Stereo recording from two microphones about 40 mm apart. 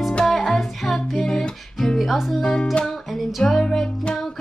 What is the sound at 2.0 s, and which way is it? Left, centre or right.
Music, centre.